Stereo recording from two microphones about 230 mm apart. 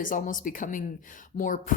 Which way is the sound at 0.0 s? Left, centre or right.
Left.